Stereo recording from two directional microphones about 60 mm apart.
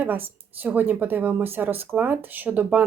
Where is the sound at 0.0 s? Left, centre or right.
Right.